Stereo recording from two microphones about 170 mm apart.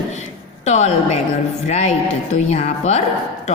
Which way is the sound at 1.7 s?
40° left (ahead or behind).